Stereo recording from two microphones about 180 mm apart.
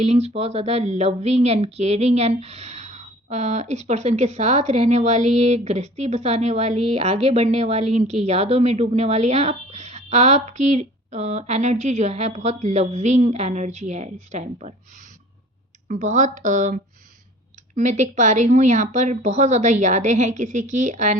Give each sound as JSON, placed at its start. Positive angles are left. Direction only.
{"t": 0.0, "sound": "speech", "side_deg": -35}